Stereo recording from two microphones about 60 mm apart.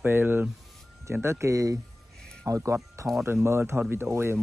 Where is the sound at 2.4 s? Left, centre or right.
Right.